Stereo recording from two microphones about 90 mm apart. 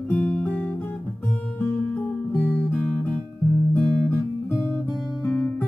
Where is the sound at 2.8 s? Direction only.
5° left (ahead or behind).